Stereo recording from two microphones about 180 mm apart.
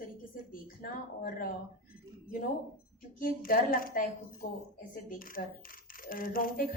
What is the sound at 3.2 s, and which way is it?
A woman's voice, 50° left (ahead or behind).